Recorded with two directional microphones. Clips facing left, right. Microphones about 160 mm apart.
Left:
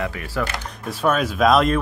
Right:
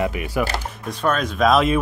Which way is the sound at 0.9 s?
5° left (ahead or behind).